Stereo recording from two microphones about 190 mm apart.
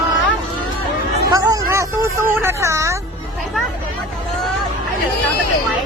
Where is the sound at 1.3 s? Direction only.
20° right (ahead or behind).